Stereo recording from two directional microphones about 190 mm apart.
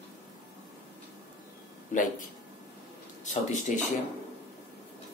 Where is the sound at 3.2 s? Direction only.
40° left (ahead or behind).